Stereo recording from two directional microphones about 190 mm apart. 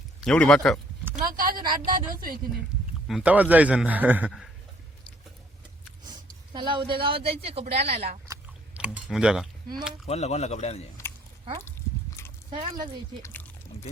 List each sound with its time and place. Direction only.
0.3 s speech: 5° left (ahead or behind)
1.1 s a sound: 45° right (ahead or behind)
1.8 s speech: 50° right (ahead or behind)
3.1 s a man's voice: 5° right (ahead or behind)
6.1 s speech: 25° right (ahead or behind)
8.3 s chewing: 5° right (ahead or behind)
10.1 s a man's voice: 35° left (ahead or behind)
12.5 s speech: 25° right (ahead or behind)
13.2 s speech: 10° left (ahead or behind)